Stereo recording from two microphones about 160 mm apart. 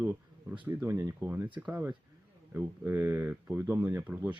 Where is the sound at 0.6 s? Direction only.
10° right (ahead or behind).